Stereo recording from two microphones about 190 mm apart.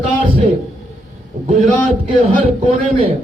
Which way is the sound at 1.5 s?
35° right (ahead or behind).